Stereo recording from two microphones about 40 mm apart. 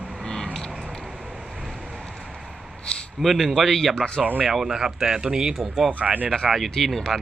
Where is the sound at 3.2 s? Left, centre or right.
Centre.